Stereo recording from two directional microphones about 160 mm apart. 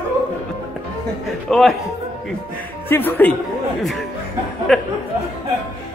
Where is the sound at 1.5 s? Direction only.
Centre (ahead or behind).